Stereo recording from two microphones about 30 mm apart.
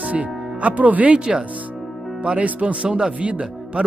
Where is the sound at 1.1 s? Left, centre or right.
Right.